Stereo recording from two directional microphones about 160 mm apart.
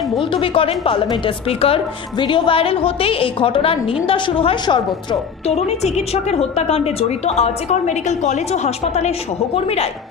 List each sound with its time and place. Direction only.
0.2 s a woman's voice: 35° left (ahead or behind)